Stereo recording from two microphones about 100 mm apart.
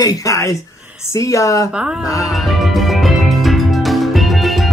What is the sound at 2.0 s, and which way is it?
Speech, 35° left (ahead or behind).